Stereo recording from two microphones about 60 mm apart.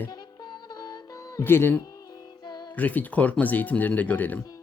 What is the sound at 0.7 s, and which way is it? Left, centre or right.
Music, left.